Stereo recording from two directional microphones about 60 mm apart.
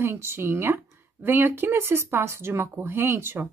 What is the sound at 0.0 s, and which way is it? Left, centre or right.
Speech, right.